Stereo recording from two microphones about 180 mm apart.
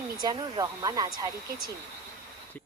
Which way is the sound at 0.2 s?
20° right (ahead or behind).